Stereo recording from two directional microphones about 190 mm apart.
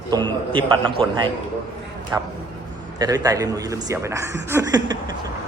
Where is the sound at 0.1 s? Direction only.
25° right (ahead or behind).